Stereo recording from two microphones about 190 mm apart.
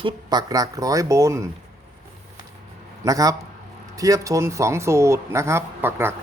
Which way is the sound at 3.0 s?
20° right (ahead or behind).